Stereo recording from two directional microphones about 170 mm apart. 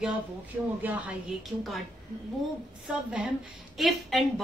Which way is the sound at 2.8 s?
5° right (ahead or behind).